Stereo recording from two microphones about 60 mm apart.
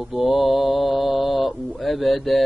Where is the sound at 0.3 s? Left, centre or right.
Centre.